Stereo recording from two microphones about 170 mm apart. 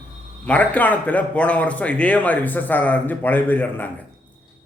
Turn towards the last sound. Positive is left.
turn(degrees=10)  # may be behind; listen again after turning